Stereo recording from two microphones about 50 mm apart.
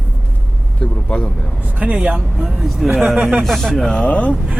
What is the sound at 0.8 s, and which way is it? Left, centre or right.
Speech, left.